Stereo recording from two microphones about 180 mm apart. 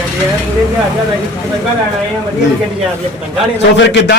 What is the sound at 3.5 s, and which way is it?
Speech, 75° left (ahead or behind).